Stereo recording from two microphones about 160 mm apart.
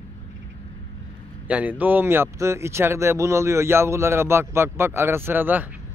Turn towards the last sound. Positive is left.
turn(degrees=-10)  # may be behind; listen again after turning